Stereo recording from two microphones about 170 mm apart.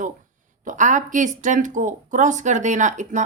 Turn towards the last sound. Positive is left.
turn(degrees=-45)  # may be behind; listen again after turning